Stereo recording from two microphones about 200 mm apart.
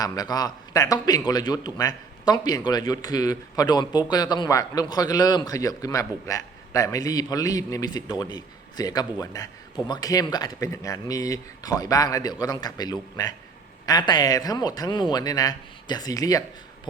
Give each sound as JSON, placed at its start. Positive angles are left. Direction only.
{"t": 0.0, "sound": "speech", "side_deg": 20}